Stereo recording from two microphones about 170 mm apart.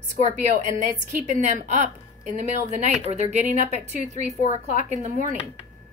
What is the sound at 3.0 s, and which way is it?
Speech, 40° right (ahead or behind).